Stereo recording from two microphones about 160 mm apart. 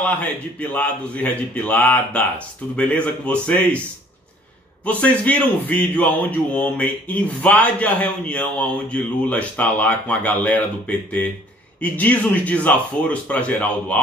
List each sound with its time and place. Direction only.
0.6 s a man's voice: 10° left (ahead or behind)
4.8 s a man's voice: 10° left (ahead or behind)